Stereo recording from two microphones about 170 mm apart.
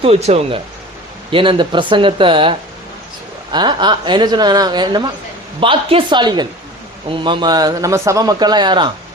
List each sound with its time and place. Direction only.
0.0 s a woman's voice: 40° right (ahead or behind)